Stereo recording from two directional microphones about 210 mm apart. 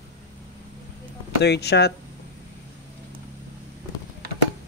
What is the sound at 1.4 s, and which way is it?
Speech, 50° left (ahead or behind).